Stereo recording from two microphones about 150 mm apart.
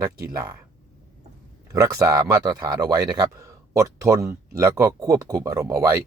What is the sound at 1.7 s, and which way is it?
Speech, 20° right (ahead or behind).